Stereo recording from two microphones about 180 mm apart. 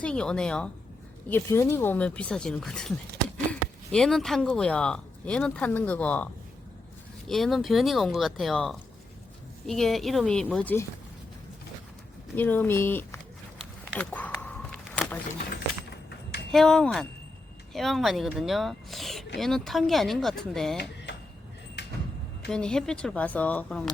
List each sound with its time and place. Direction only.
0.0 s speech: 5° left (ahead or behind)
7.3 s speech: centre (ahead or behind)
12.4 s speech: 10° left (ahead or behind)
13.9 s a sound: 10° left (ahead or behind)
16.5 s speech: centre (ahead or behind)
21.8 s door: 70° left (ahead or behind)
22.4 s speech: 5° left (ahead or behind)